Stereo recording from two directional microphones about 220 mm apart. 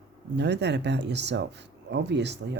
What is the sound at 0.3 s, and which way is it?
Speech, 50° right (ahead or behind).